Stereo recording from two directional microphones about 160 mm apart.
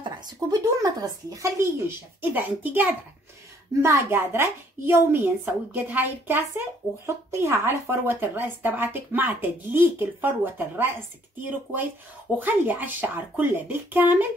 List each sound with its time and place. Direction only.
0.0 s speech: 25° right (ahead or behind)
12.4 s speech: 10° right (ahead or behind)